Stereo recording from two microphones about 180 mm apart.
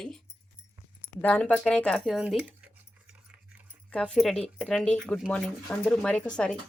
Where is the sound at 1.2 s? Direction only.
10° left (ahead or behind); by 2.6 s 5° right (ahead or behind).